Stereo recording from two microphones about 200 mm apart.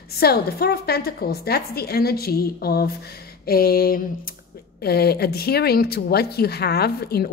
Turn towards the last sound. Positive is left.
turn(degrees=50)  # may be behind; listen again after turning